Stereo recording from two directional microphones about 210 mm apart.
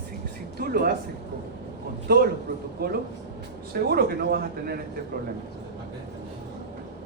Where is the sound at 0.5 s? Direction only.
45° right (ahead or behind).